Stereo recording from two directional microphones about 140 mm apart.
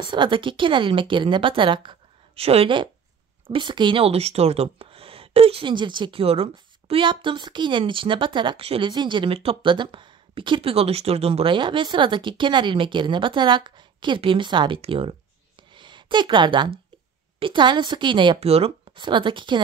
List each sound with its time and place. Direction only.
0.0 s speech: 35° right (ahead or behind)
18.9 s speech: 35° right (ahead or behind)